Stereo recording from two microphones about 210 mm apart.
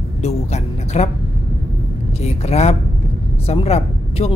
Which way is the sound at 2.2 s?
30° left (ahead or behind).